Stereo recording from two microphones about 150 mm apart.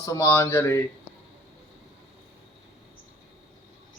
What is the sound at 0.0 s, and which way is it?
Speech, 20° left (ahead or behind).